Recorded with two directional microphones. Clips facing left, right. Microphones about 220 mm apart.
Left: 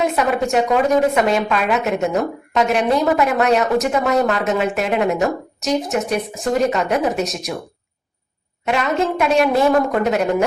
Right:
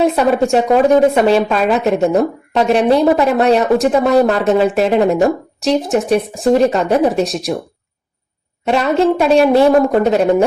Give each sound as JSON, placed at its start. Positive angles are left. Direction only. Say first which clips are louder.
{"t": 0.0, "sound": "a woman's voice", "louder": "right 6 dB", "side_deg": -30}
{"t": 8.6, "sound": "a woman's voice", "louder": "right 6 dB", "side_deg": -35}